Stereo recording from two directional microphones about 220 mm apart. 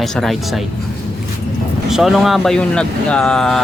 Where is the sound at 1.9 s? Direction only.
Centre (ahead or behind).